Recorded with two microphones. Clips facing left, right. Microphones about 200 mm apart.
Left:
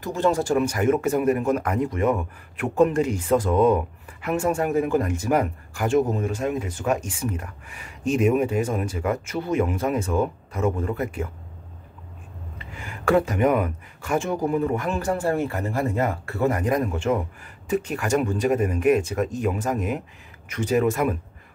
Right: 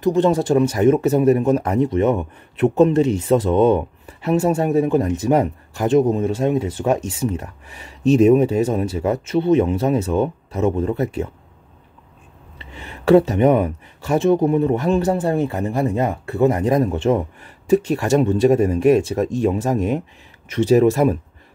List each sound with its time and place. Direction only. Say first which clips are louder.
0.0 s a man's voice: right 6 dB; 20° right (ahead or behind)
12.5 s a man's voice: right 2 dB; 25° right (ahead or behind)